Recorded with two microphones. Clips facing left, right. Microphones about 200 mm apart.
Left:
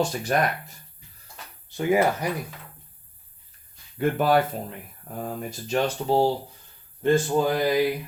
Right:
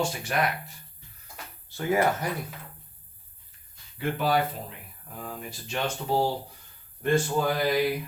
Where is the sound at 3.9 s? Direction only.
50° left (ahead or behind); by 6.3 s 35° left (ahead or behind).